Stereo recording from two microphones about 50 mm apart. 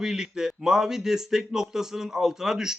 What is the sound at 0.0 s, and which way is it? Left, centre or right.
Speech, centre.